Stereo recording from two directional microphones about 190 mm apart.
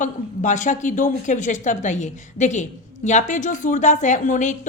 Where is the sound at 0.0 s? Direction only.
40° left (ahead or behind).